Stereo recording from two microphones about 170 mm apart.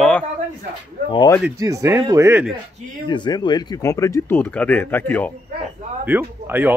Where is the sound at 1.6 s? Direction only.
20° right (ahead or behind).